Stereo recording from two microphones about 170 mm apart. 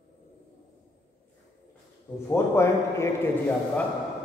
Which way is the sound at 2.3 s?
15° left (ahead or behind).